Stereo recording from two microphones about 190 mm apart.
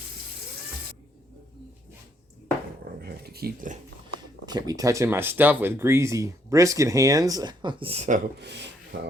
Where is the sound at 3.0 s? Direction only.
55° right (ahead or behind).